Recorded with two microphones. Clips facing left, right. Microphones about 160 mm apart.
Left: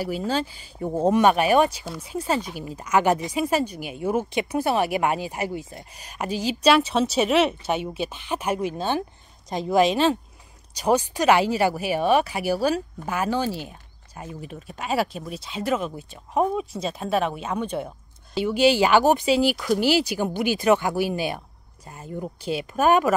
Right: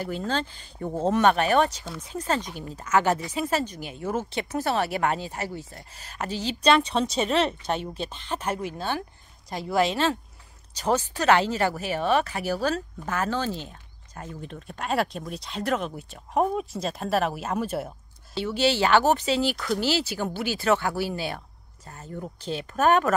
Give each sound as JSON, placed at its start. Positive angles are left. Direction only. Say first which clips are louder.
{"t": 0.0, "sound": "speech", "louder": "left 3 dB", "side_deg": 10}
{"t": 18.3, "sound": "speech", "louder": "left 5 dB", "side_deg": 15}